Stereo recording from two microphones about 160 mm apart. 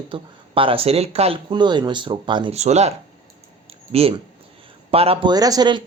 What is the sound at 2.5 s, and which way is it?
Speech, 45° right (ahead or behind).